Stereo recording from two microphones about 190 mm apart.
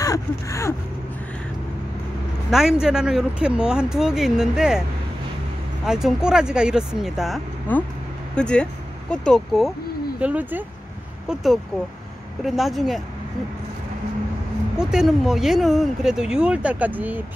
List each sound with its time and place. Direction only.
0.0 s gasp: 15° left (ahead or behind)
2.5 s speech: 5° right (ahead or behind)
5.9 s speech: 5° right (ahead or behind)
14.8 s speech: 5° right (ahead or behind)